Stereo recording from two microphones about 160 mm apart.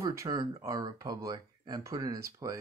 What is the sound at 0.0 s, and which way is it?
Speech, 20° right (ahead or behind).